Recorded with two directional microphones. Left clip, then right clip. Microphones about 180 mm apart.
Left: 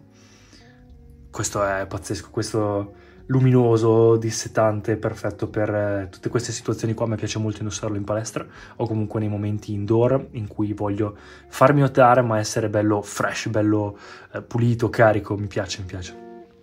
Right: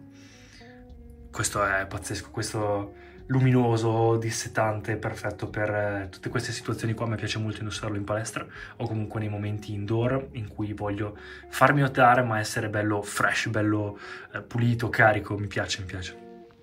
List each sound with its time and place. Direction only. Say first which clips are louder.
1.3 s speech: left 2 dB; 25° left (ahead or behind)